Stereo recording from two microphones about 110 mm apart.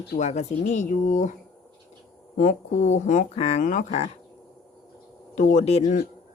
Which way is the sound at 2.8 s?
90° left.